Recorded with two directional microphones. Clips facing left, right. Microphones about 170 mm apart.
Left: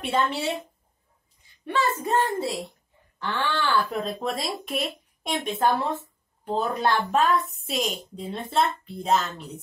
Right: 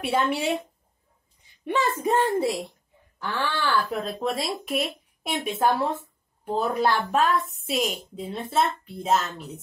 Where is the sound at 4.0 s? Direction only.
Centre (ahead or behind).